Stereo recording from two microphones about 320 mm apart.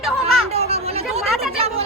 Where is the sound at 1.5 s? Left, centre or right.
Centre.